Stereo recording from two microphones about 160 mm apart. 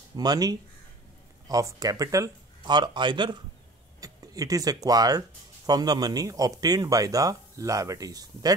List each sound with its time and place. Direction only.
0.1 s speech: 25° right (ahead or behind)